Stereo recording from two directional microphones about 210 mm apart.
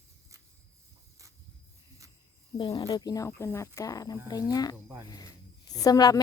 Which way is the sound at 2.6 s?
20° left (ahead or behind).